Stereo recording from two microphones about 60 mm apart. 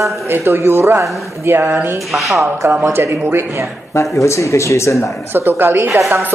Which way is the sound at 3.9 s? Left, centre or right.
Left.